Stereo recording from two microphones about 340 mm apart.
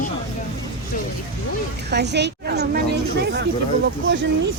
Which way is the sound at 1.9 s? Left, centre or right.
Right.